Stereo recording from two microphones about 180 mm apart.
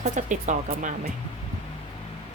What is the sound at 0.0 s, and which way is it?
Speech, 40° right (ahead or behind).